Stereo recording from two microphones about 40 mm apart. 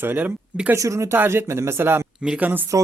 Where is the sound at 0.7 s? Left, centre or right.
Right.